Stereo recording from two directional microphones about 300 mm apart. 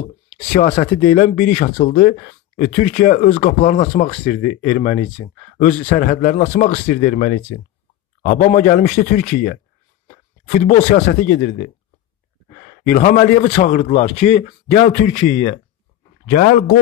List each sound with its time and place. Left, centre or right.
0.5 s speech: left
10.6 s speech: left
12.8 s speech: left